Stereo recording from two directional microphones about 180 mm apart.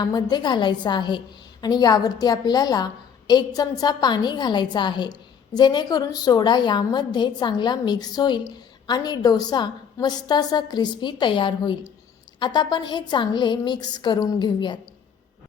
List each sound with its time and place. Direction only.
0.0 s a woman's voice: 25° left (ahead or behind)